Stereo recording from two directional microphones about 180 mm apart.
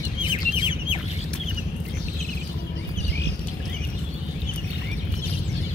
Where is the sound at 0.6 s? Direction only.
30° left (ahead or behind).